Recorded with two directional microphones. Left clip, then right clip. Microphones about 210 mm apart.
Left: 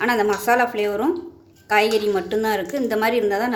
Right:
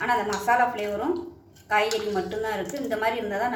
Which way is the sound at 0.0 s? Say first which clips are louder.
Left 5 dB; 55° left (ahead or behind).